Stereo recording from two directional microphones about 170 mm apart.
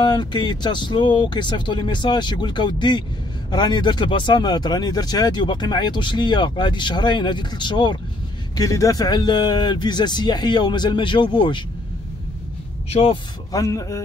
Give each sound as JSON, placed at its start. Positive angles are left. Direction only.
{"t": 0.0, "sound": "speech", "side_deg": 25}
{"t": 12.9, "sound": "speech", "side_deg": 35}
{"t": 13.5, "sound": "speech", "side_deg": 20}